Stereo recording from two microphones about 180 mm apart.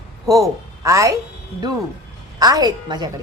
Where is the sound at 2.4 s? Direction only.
20° right (ahead or behind).